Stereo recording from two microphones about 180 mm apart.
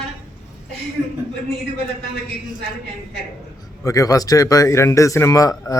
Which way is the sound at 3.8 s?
20° left (ahead or behind).